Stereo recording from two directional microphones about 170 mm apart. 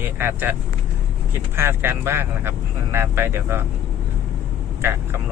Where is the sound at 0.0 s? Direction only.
10° right (ahead or behind).